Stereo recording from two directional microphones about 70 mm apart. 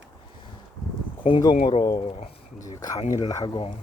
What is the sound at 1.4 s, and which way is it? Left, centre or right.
Speech, left.